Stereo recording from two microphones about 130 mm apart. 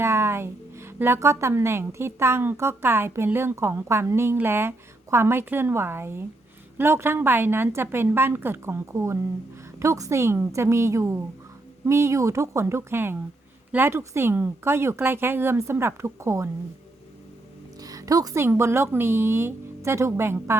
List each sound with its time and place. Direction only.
0.0 s a woman's voice: 20° right (ahead or behind)
17.7 s speech: 25° right (ahead or behind)